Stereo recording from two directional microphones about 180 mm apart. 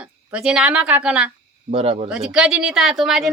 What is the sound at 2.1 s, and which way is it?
Speech, 5° right (ahead or behind).